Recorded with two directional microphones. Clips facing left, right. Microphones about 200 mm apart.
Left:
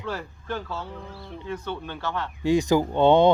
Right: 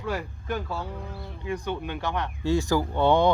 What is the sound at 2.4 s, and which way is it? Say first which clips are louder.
Speech: left 4 dB; 20° left (ahead or behind).